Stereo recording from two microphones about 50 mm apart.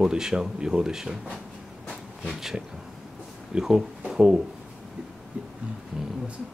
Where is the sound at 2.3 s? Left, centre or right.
Centre.